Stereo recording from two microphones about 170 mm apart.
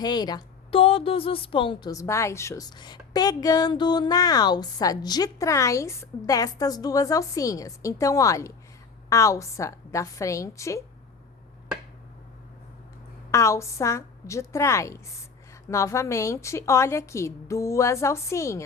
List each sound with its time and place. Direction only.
0.0 s a woman's voice: 25° left (ahead or behind)
13.3 s a woman's voice: 15° left (ahead or behind)